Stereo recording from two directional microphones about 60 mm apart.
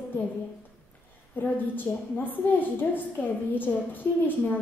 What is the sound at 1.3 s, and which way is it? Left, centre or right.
A woman's voice, left.